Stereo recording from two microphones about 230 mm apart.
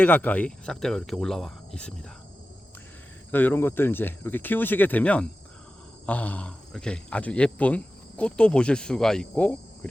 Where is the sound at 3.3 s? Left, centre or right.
Centre.